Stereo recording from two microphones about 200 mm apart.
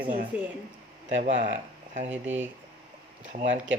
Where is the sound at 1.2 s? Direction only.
40° right (ahead or behind).